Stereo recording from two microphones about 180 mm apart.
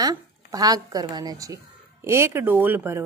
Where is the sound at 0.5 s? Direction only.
20° right (ahead or behind).